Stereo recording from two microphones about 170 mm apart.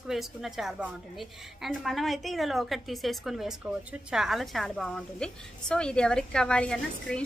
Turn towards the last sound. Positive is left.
turn(degrees=5)  # may be behind; listen again after turning